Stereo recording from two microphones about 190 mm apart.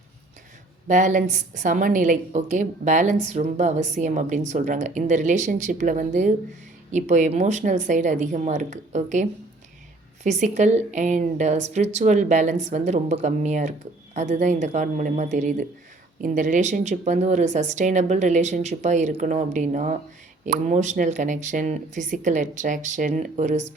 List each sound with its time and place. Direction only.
0.9 s a woman's voice: 40° right (ahead or behind)
10.2 s a woman's voice: 40° right (ahead or behind)